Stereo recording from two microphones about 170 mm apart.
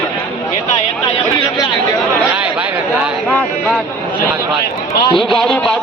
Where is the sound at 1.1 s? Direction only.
25° left (ahead or behind).